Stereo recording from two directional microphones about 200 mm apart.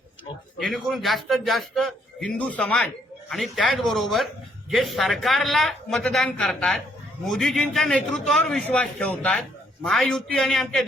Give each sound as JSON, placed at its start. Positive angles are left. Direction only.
{"t": 0.6, "sound": "a man's voice", "side_deg": 0}